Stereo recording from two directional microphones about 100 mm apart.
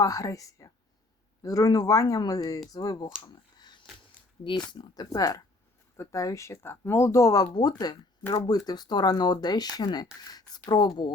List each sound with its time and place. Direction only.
0.0 s a woman's voice: 35° left (ahead or behind)
4.4 s speech: 50° left (ahead or behind)